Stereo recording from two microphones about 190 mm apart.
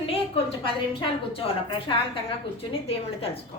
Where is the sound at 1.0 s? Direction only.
30° left (ahead or behind).